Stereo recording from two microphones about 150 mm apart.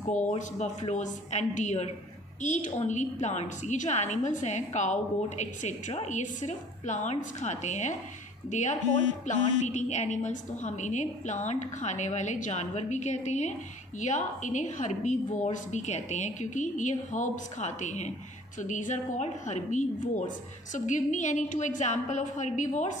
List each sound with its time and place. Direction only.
0.1 s a woman's voice: 55° left (ahead or behind)